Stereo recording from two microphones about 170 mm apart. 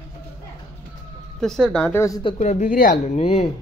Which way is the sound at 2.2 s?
40° left (ahead or behind).